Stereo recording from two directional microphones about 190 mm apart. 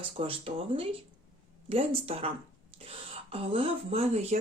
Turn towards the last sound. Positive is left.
turn(degrees=-35)  # may be behind; listen again after turning